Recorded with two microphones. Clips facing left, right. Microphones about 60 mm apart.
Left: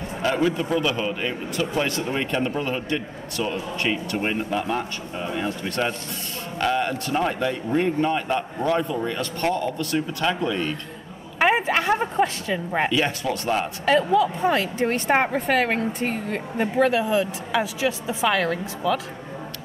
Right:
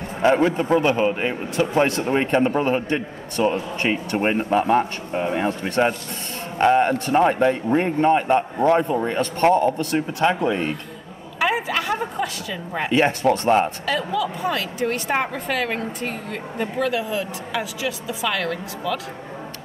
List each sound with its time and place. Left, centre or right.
0.2 s a man's voice: right
11.3 s a sound: left
12.9 s a man's voice: right
13.8 s a woman's voice: left